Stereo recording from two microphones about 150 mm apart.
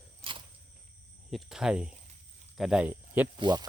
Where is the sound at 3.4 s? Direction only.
30° right (ahead or behind).